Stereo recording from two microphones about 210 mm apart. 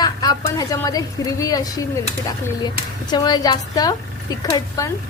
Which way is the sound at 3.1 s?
20° left (ahead or behind).